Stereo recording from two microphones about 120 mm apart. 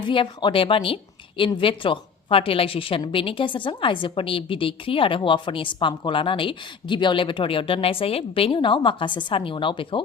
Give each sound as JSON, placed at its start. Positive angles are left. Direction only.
{"t": 0.1, "sound": "a woman's voice", "side_deg": 45}